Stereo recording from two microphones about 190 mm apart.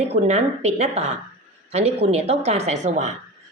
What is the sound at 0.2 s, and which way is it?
A woman's voice, 35° right (ahead or behind).